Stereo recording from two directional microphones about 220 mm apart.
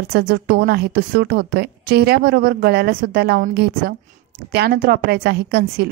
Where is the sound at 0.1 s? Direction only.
45° right (ahead or behind).